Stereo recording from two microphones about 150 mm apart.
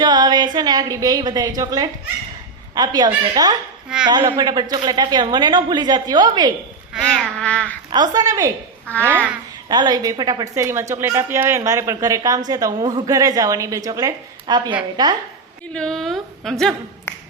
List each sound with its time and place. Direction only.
0.0 s a woman's voice: 30° right (ahead or behind)
6.9 s a sound: 5° left (ahead or behind)
7.9 s a woman's voice: 30° right (ahead or behind)
9.6 s a woman's voice: 30° right (ahead or behind)
15.7 s a woman's voice: 5° left (ahead or behind)
17.1 s finger snapping: 15° left (ahead or behind)